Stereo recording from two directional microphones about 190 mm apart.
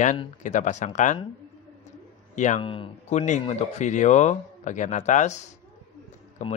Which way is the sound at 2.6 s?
30° left (ahead or behind).